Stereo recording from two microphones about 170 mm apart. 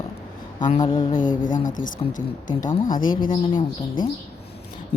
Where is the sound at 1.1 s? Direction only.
50° left (ahead or behind).